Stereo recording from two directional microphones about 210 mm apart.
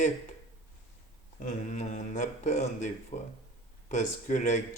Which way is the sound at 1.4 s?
35° left (ahead or behind).